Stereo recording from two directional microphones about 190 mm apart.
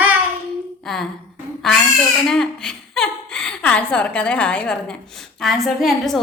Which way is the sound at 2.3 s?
5° left (ahead or behind).